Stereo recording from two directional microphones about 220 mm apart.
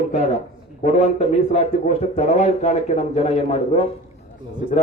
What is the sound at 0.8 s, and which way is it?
A man's voice, 30° left (ahead or behind).